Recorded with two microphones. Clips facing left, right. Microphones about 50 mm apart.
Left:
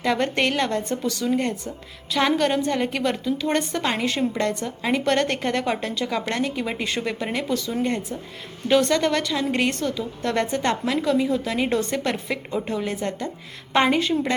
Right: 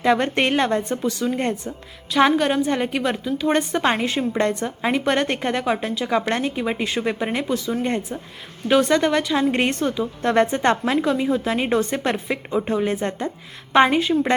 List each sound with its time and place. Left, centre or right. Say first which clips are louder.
0.0 s a woman's voice: right 3 dB; right
2.1 s a woman's voice: right 3 dB; centre
4.4 s a woman's voice: right 3 dB; right
4.9 s a woman's voice: right 1 dB; centre
6.1 s a woman's voice: right 5 dB; right
8.6 s a woman's voice: right 2 dB; centre; by 13.3 s right
13.7 s a woman's voice: right 4 dB; centre